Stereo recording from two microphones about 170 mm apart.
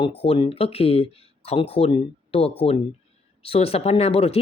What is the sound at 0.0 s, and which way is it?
Speech, 35° left (ahead or behind).